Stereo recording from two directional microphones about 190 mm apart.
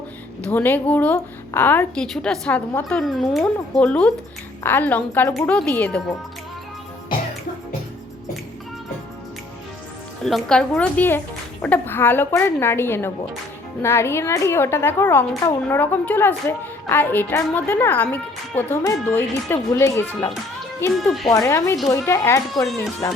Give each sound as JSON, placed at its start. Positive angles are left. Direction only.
{"t": 0.4, "sound": "a woman's voice", "side_deg": 10}
{"t": 10.2, "sound": "a woman's voice", "side_deg": 0}